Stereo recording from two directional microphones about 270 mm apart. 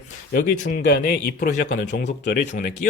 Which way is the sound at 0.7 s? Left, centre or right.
Left.